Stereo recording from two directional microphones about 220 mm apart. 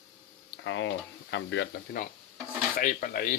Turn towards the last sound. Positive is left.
turn(degrees=40)  # may be behind; listen again after turning